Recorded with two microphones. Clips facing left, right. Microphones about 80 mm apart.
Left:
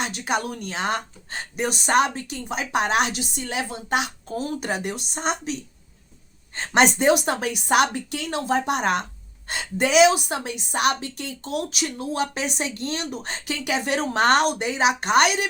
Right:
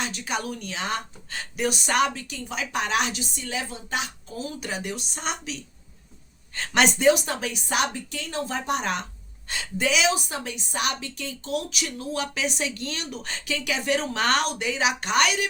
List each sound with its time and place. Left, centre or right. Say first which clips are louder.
0.0 s a woman's voice: left 4 dB; left